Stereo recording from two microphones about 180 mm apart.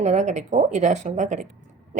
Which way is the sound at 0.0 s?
40° right (ahead or behind).